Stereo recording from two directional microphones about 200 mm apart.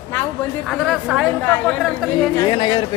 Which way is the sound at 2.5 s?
25° left (ahead or behind).